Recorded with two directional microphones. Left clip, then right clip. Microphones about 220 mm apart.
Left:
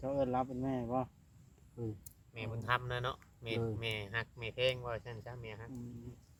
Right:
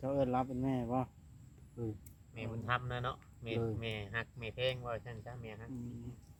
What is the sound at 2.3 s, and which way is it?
Speech, 55° left (ahead or behind).